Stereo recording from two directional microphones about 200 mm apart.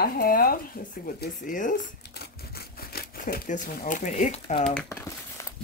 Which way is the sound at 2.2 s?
50° left (ahead or behind).